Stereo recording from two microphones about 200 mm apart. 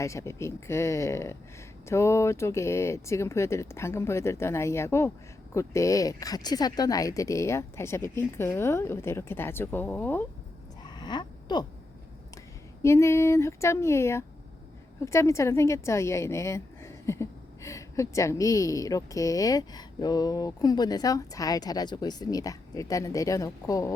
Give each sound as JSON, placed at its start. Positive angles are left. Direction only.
{"t": 0.0, "sound": "a woman's voice", "side_deg": 15}
{"t": 10.8, "sound": "a sound", "side_deg": 20}
{"t": 12.8, "sound": "a woman's voice", "side_deg": 15}